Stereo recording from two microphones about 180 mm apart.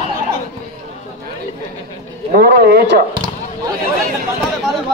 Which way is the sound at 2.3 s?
60° right (ahead or behind).